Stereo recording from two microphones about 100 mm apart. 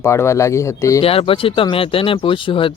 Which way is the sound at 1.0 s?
70° left (ahead or behind).